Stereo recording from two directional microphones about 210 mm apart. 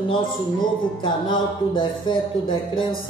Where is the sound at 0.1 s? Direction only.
20° left (ahead or behind).